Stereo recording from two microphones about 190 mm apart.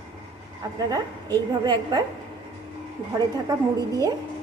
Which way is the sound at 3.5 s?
20° right (ahead or behind).